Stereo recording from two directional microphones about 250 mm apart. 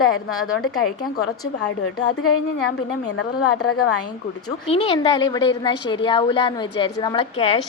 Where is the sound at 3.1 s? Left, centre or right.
Left.